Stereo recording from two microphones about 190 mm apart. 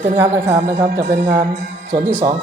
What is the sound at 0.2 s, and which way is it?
Speech, 20° right (ahead or behind).